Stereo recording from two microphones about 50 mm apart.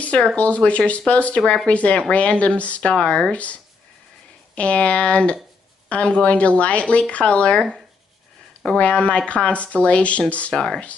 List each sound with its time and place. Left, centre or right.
0.4 s speech: left
4.6 s speech: left
8.6 s speech: left
10.5 s speech: centre